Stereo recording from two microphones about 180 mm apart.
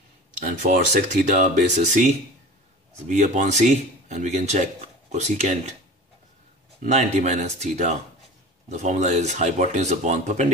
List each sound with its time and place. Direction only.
0.4 s speech: 45° right (ahead or behind)
6.8 s speech: 40° right (ahead or behind)